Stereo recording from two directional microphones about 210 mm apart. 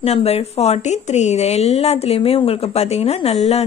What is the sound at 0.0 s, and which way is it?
A woman's voice, 30° left (ahead or behind).